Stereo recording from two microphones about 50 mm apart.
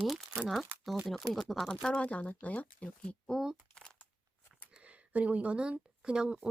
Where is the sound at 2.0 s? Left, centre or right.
Left.